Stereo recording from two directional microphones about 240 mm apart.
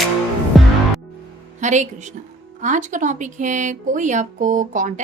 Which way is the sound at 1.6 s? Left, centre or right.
Right.